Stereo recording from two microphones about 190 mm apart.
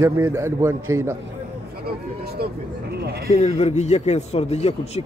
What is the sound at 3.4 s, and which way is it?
A man's voice, 35° left (ahead or behind).